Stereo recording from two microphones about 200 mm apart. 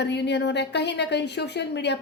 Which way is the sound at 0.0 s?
60° left (ahead or behind).